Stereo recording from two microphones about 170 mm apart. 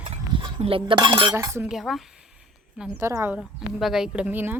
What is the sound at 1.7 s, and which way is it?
Speech, centre (ahead or behind).